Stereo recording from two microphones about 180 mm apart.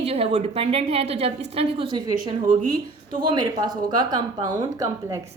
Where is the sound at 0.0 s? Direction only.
35° right (ahead or behind).